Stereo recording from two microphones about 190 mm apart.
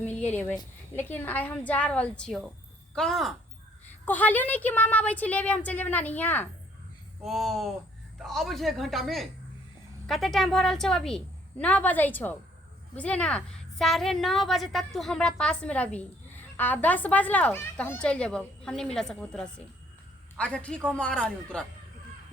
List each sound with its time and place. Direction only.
0.0 s a woman's voice: 5° left (ahead or behind)